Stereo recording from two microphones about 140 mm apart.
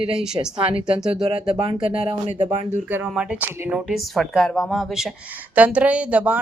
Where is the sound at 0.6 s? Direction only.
40° right (ahead or behind).